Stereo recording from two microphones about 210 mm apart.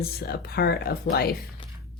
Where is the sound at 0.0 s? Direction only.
45° left (ahead or behind).